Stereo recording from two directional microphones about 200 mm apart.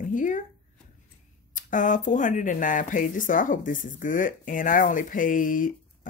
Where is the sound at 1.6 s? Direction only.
40° left (ahead or behind).